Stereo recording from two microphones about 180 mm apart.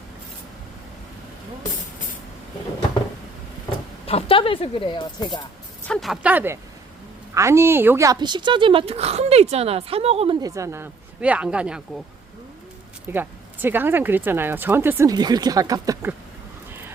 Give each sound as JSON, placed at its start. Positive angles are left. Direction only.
{"t": 4.0, "sound": "speech", "side_deg": 30}
{"t": 5.9, "sound": "speech", "side_deg": 0}
{"t": 10.4, "sound": "speech", "side_deg": -15}
{"t": 13.1, "sound": "speech", "side_deg": -10}